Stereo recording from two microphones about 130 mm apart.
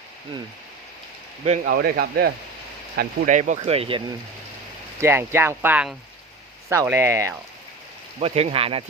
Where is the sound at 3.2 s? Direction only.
75° right (ahead or behind).